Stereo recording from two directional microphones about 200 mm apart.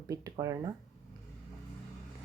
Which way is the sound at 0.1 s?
20° right (ahead or behind).